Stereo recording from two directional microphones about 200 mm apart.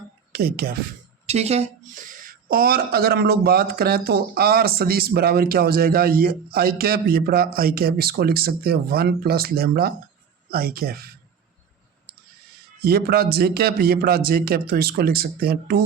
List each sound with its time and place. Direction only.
0.3 s a woman's voice: 50° right (ahead or behind)
1.3 s a woman's voice: 30° right (ahead or behind); by 11.1 s 50° right (ahead or behind)
12.8 s a woman's voice: 50° right (ahead or behind)